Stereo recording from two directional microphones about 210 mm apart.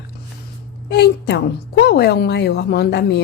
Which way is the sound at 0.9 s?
55° left (ahead or behind).